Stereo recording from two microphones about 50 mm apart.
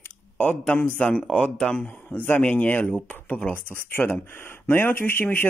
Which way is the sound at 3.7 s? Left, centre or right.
Left.